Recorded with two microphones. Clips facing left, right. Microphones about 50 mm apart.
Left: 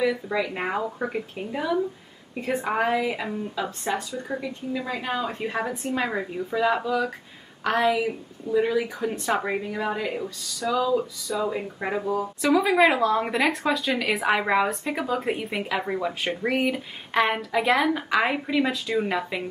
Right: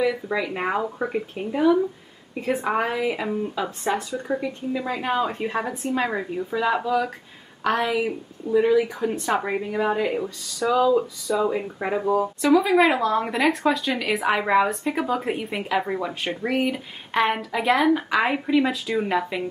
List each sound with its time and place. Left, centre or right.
0.0 s speech: centre
9.7 s speech: centre
12.0 s speech: right
12.4 s speech: centre